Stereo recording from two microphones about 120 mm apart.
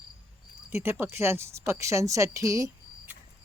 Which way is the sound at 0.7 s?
20° right (ahead or behind).